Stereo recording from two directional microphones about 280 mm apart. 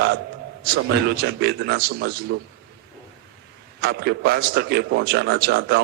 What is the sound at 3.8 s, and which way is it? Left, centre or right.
A man's voice, right.